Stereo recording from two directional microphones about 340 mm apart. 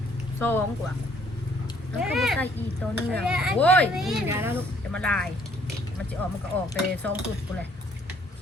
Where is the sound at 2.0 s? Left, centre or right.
Centre.